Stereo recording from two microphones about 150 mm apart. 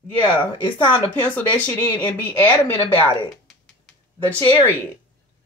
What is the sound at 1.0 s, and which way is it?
Speech, 10° left (ahead or behind).